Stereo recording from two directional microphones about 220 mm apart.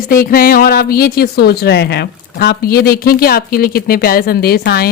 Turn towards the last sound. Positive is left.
turn(degrees=45)  # may be behind; listen again after turning